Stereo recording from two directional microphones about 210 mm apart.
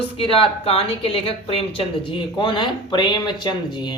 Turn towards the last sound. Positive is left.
turn(degrees=20)  # may be behind; listen again after turning